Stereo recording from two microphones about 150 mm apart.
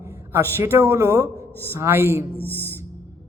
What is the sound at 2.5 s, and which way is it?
Music, 15° right (ahead or behind).